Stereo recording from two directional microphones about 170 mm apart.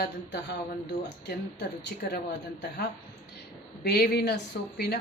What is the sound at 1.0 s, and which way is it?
Speech, 85° left.